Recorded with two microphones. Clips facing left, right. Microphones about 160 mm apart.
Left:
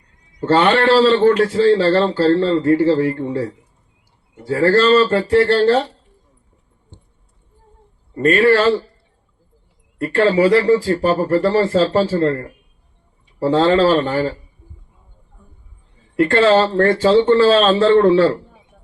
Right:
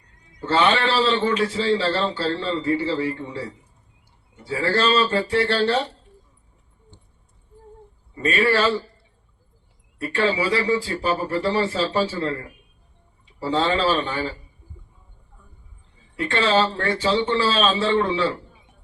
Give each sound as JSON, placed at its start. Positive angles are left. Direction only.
{"t": 0.5, "sound": "speech", "side_deg": 55}
{"t": 8.1, "sound": "speech", "side_deg": 55}
{"t": 10.0, "sound": "speech", "side_deg": 55}
{"t": 16.2, "sound": "speech", "side_deg": 60}